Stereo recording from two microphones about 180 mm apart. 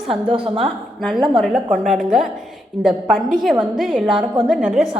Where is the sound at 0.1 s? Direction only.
30° right (ahead or behind).